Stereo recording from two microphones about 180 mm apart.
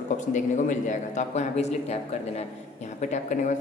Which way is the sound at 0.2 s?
45° left (ahead or behind).